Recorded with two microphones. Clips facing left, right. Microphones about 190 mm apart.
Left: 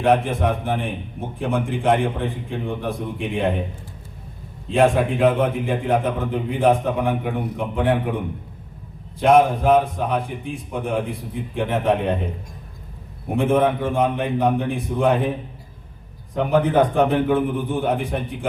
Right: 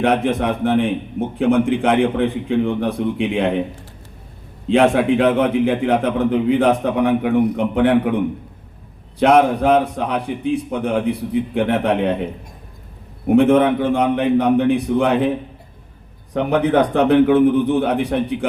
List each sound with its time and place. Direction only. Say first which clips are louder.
0.0 s a man's voice: right 2 dB; 75° right (ahead or behind)
4.7 s a man's voice: right 4 dB; 75° right (ahead or behind)
9.1 s a man's voice: right 2 dB; 70° right (ahead or behind)
13.2 s a man's voice: right 6 dB; 70° right (ahead or behind)
16.3 s a man's voice: right 2 dB; 75° right (ahead or behind)